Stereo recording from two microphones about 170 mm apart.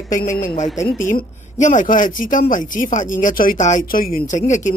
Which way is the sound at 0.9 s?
50° left (ahead or behind).